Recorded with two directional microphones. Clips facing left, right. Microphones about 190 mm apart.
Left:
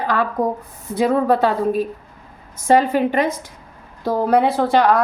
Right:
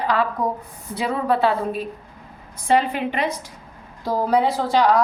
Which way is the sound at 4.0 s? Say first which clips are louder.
Left 3 dB; 60° left (ahead or behind).